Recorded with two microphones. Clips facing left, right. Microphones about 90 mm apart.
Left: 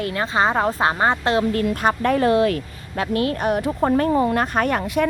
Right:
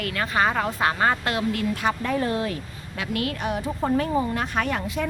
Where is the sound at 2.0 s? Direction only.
70° left (ahead or behind).